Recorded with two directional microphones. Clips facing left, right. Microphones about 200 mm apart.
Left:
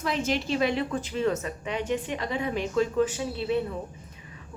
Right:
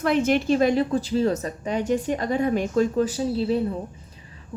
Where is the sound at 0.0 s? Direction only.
60° right (ahead or behind).